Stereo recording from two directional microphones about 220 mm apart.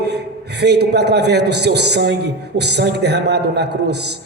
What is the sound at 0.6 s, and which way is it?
A man's voice, 50° right (ahead or behind).